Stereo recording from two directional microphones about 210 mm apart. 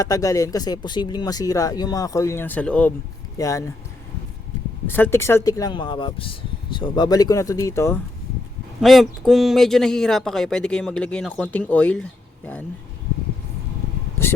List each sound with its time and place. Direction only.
0.0 s speech: 15° left (ahead or behind)
4.9 s speech: 10° left (ahead or behind)
8.8 s speech: centre (ahead or behind)